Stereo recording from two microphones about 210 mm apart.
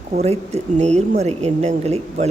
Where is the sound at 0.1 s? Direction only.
30° right (ahead or behind).